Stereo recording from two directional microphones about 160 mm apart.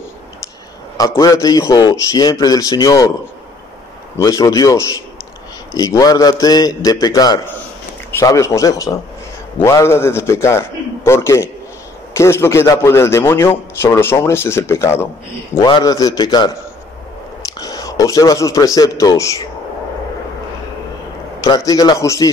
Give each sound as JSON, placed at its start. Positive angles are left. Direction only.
{"t": 0.9, "sound": "a man's voice", "side_deg": 20}
{"t": 4.2, "sound": "a man's voice", "side_deg": 20}
{"t": 17.6, "sound": "a man's voice", "side_deg": 20}
{"t": 21.5, "sound": "a man's voice", "side_deg": 20}